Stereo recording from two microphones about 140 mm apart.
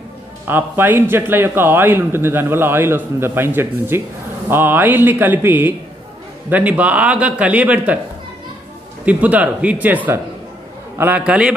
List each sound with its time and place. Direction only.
0.5 s a man's voice: 15° right (ahead or behind)
9.0 s a man's voice: 10° right (ahead or behind)